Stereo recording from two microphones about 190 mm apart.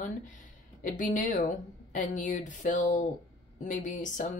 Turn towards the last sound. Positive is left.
turn(degrees=40)  # may be behind; listen again after turning